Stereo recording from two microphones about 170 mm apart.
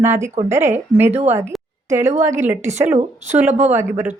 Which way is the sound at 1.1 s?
40° right (ahead or behind).